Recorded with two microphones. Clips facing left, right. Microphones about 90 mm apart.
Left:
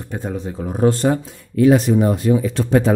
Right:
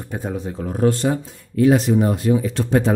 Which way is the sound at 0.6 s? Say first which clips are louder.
Left 2 dB; 20° left (ahead or behind).